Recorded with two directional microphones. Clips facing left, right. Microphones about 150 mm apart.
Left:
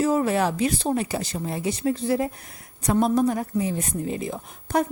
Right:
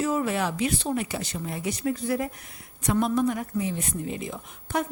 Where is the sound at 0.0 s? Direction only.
40° left (ahead or behind).